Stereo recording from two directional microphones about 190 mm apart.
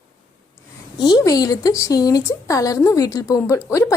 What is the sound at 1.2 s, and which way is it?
A woman's voice, 20° left (ahead or behind).